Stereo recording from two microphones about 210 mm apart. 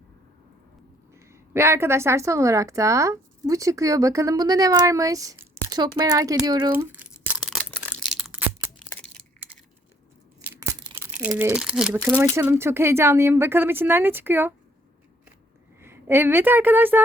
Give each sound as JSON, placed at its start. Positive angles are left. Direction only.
{"t": 1.1, "sound": "a woman's voice", "side_deg": -10}
{"t": 6.7, "sound": "a sound", "side_deg": -10}
{"t": 10.4, "sound": "tearing", "side_deg": -10}
{"t": 10.9, "sound": "a woman's voice", "side_deg": -10}
{"t": 15.8, "sound": "a woman's voice", "side_deg": -10}